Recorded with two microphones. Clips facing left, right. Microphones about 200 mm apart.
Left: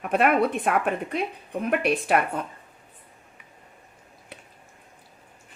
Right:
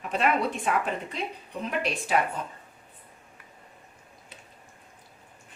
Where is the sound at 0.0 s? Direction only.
55° left (ahead or behind).